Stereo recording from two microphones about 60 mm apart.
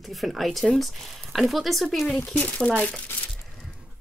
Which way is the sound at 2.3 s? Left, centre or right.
Left.